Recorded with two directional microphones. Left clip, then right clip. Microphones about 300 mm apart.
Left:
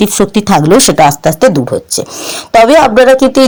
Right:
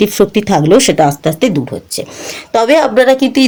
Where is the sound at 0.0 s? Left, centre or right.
Centre.